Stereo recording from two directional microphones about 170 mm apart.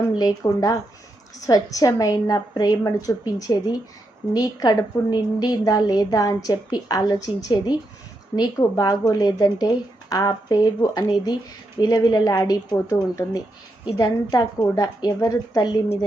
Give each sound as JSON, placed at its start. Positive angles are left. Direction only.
{"t": 0.2, "sound": "a woman's voice", "side_deg": 20}